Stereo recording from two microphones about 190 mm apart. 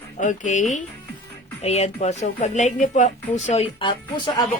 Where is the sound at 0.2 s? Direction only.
40° left (ahead or behind).